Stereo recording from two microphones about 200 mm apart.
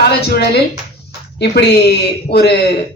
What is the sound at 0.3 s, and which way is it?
A woman's voice, 55° left (ahead or behind).